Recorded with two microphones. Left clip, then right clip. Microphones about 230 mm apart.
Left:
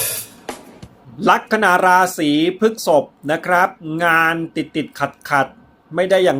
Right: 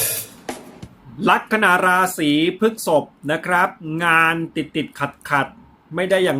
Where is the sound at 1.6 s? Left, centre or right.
Centre.